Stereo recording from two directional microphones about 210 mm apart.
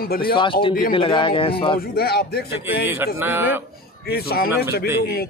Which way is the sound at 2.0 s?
45° left (ahead or behind).